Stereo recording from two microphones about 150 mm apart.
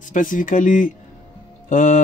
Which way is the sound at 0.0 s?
60° left (ahead or behind).